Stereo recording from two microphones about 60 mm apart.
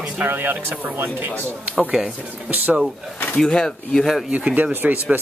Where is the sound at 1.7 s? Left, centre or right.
Centre.